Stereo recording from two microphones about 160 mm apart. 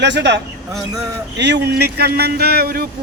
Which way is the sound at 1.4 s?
90° right.